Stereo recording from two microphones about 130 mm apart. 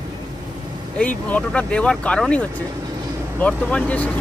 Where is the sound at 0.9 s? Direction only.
10° left (ahead or behind).